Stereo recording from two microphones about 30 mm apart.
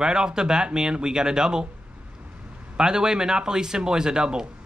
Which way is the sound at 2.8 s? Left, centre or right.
Right.